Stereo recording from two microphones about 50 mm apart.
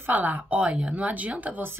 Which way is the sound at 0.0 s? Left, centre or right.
Right.